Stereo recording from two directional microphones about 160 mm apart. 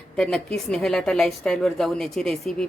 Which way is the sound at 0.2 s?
5° left (ahead or behind).